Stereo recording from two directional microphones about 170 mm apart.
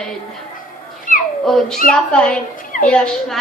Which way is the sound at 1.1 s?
50° left (ahead or behind).